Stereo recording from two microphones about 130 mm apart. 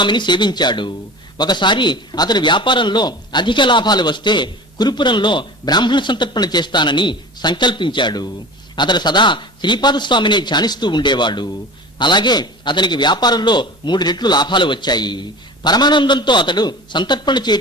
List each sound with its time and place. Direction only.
0.0 s a man's voice: 35° left (ahead or behind)